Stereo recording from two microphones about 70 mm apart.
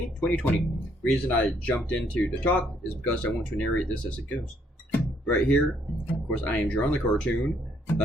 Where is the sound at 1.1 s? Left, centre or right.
Centre.